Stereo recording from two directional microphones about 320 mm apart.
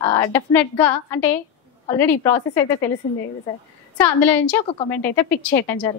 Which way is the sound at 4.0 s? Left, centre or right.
Centre.